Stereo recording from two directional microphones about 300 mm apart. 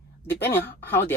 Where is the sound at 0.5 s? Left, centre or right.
Centre.